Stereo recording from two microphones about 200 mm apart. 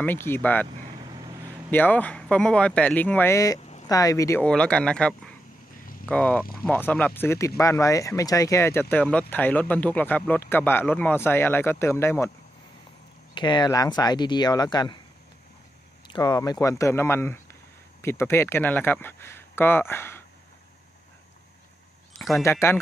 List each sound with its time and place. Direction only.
0.0 s speech: 10° left (ahead or behind)
1.7 s speech: 10° left (ahead or behind)
4.5 s speech: 5° left (ahead or behind)
13.3 s speech: 20° left (ahead or behind)
16.1 s speech: 20° left (ahead or behind)
22.4 s speech: 10° left (ahead or behind)